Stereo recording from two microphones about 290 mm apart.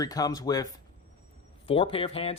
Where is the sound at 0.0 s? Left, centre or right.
Centre.